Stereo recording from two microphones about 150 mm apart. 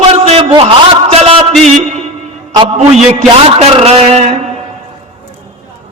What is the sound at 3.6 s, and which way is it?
Speech, 40° right (ahead or behind).